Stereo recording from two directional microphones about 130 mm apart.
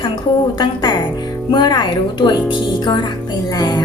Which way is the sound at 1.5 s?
35° left (ahead or behind).